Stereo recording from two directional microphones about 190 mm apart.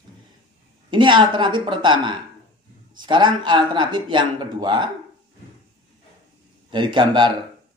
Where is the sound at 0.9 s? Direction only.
25° right (ahead or behind).